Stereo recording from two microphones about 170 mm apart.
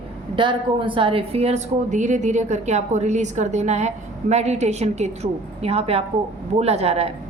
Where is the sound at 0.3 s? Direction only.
30° right (ahead or behind).